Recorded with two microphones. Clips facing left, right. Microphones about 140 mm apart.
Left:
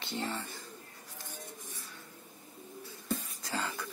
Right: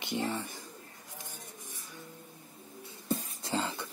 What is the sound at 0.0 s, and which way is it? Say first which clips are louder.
Speech: right 3 dB; 15° right (ahead or behind).